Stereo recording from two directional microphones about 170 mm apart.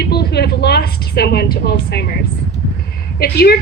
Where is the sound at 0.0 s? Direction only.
75° left (ahead or behind).